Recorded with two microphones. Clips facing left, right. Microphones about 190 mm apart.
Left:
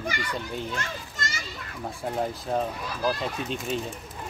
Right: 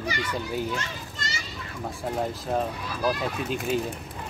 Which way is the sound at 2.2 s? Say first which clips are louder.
Even; centre (ahead or behind).